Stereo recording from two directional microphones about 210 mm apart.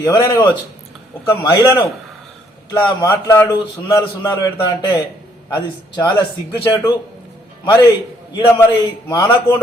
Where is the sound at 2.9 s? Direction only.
15° left (ahead or behind).